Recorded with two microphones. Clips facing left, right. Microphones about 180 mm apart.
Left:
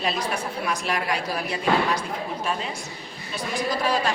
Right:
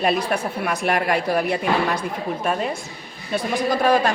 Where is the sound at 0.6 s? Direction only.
60° right (ahead or behind).